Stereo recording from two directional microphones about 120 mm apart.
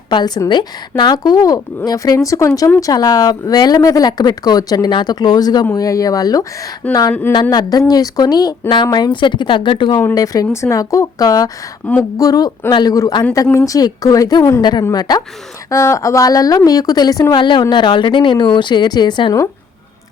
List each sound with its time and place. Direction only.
0.1 s a woman's voice: 35° left (ahead or behind)
7.1 s speech: 15° left (ahead or behind)
7.5 s speech: 30° left (ahead or behind)
10.2 s a woman's voice: 25° left (ahead or behind)
17.3 s speech: 40° left (ahead or behind)